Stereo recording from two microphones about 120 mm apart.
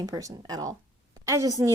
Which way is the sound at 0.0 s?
30° right (ahead or behind).